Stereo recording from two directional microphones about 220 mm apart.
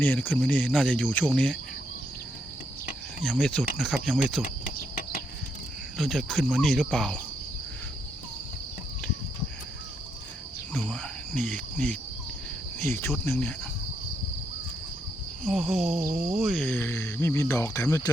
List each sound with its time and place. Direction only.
0.0 s speech: 10° left (ahead or behind)
3.2 s speech: 5° left (ahead or behind)
4.4 s cricket: 35° left (ahead or behind)
6.0 s speech: centre (ahead or behind)
10.8 s speech: 5° left (ahead or behind)
15.4 s speech: centre (ahead or behind)
16.0 s cricket: 35° right (ahead or behind)
16.3 s speech: 5° right (ahead or behind)
16.6 s speech: 10° left (ahead or behind)